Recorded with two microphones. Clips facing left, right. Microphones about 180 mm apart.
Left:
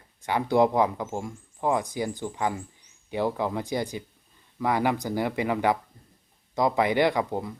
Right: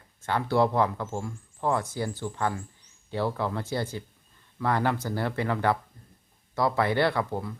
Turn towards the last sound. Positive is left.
turn(degrees=15)  # may be behind; listen again after turning